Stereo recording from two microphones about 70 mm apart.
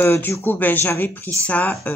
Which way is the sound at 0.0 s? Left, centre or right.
Left.